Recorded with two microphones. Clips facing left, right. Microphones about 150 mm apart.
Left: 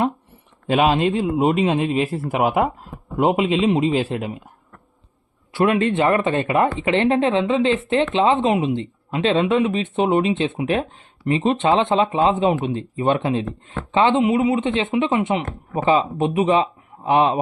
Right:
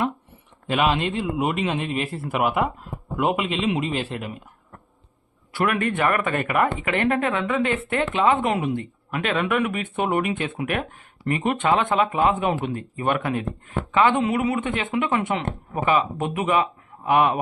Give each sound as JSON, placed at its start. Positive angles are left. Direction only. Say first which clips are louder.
{"t": 0.7, "sound": "a man's voice", "louder": "left 5 dB", "side_deg": 40}
{"t": 5.5, "sound": "a man's voice", "louder": "left 5 dB", "side_deg": 20}